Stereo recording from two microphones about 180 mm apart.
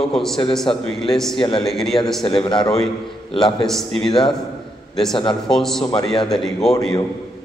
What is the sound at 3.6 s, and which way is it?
Speech, centre (ahead or behind).